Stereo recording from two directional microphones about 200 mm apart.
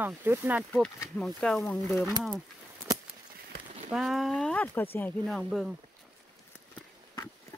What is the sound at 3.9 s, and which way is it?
Speech, centre (ahead or behind).